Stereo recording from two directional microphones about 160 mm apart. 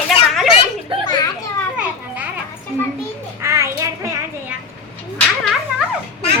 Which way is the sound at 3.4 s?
20° right (ahead or behind).